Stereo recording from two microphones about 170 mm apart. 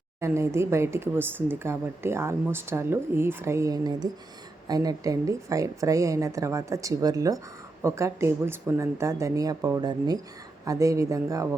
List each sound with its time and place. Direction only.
0.2 s a woman's voice: 15° right (ahead or behind)